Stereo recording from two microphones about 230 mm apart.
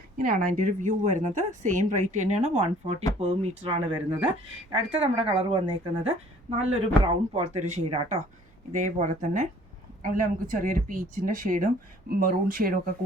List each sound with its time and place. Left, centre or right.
0.2 s speech: right